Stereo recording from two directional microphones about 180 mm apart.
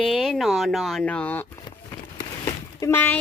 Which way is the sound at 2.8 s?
15° left (ahead or behind).